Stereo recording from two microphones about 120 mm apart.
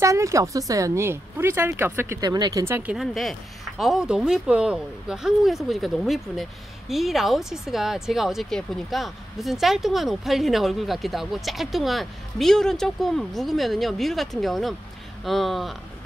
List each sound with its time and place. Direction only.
0.0 s speech: 25° right (ahead or behind)
2.1 s speech: 35° right (ahead or behind)
2.9 s speech: centre (ahead or behind)